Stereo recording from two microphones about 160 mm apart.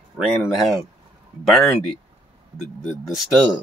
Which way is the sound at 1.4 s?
Centre (ahead or behind).